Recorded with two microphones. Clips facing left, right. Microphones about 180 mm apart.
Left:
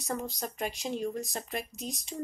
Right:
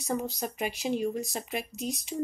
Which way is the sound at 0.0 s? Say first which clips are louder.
Right 4 dB; centre (ahead or behind).